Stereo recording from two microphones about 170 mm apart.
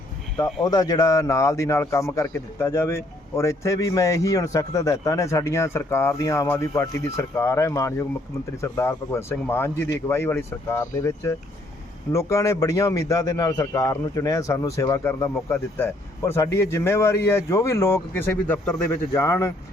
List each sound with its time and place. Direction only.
0.6 s speech: 20° left (ahead or behind)